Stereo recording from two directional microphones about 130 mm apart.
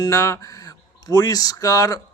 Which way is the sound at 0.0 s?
25° left (ahead or behind).